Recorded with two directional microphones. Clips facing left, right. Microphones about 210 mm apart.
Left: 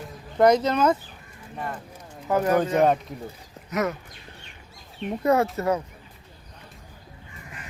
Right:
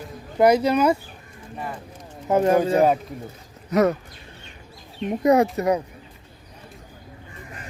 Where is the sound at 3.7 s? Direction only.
35° right (ahead or behind).